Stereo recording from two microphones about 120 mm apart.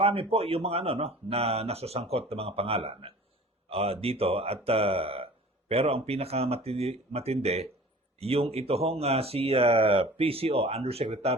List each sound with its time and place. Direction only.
0.0 s speech: 55° right (ahead or behind)